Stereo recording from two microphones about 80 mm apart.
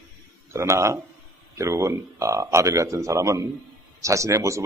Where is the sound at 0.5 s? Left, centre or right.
Right.